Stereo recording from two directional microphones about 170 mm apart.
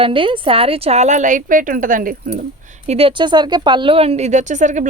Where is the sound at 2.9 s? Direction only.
35° right (ahead or behind).